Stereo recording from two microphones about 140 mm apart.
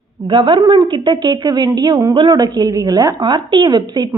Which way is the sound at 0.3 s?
35° right (ahead or behind).